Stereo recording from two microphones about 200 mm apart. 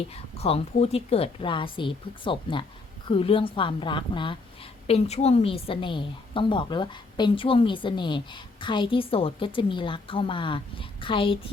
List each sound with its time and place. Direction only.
0.1 s a woman's voice: 30° left (ahead or behind)